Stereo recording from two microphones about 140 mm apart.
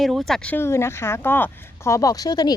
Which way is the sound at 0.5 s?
20° left (ahead or behind).